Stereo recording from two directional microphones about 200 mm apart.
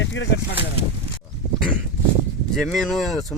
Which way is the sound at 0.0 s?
65° left (ahead or behind).